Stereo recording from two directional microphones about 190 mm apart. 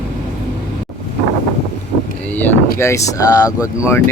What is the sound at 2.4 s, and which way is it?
Speech, 10° left (ahead or behind).